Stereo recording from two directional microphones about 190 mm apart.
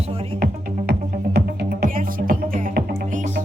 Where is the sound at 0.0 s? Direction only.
30° right (ahead or behind).